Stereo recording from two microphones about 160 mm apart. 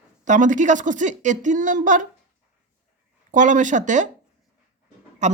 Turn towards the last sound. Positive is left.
turn(degrees=-45)  # may be behind; listen again after turning